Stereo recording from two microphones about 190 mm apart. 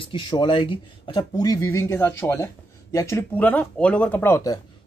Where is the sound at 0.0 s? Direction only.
25° left (ahead or behind).